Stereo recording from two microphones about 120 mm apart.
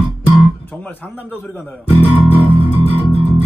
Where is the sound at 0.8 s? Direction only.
15° left (ahead or behind).